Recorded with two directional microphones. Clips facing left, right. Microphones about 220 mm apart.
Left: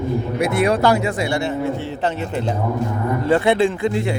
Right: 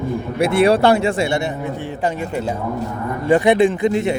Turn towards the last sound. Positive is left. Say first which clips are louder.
# right 3 dB
turn(degrees=-20)  # may be behind; listen again after turning